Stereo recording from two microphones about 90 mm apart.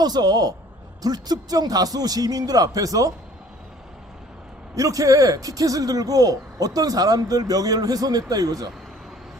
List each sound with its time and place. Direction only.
0.0 s speech: 50° right (ahead or behind)
4.7 s speech: 40° right (ahead or behind)